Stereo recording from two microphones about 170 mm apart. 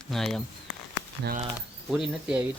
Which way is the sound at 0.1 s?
Centre (ahead or behind).